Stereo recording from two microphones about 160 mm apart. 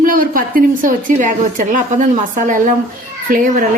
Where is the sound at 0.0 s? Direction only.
60° right (ahead or behind).